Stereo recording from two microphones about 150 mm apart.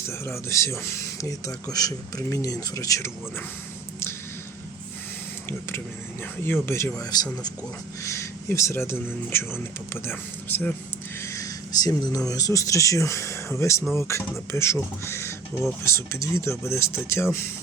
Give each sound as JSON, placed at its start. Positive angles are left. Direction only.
{"t": 0.1, "sound": "speech", "side_deg": 20}
{"t": 5.5, "sound": "speech", "side_deg": 15}